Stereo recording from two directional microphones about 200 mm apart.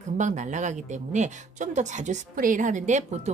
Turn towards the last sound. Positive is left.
turn(degrees=-35)  # may be behind; listen again after turning